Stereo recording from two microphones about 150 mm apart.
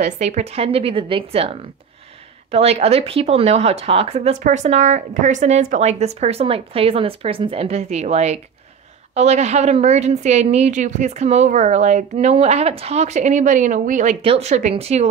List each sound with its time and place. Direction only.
0.0 s a woman's voice: 50° right (ahead or behind)
4.4 s a woman's voice: 55° right (ahead or behind)
14.2 s a woman's voice: 45° right (ahead or behind)